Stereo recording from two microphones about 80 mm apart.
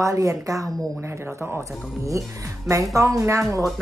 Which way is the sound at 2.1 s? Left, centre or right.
Right.